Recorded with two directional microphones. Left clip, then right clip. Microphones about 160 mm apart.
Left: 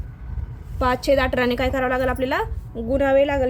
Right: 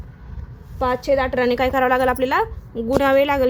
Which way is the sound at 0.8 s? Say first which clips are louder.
Even; centre (ahead or behind).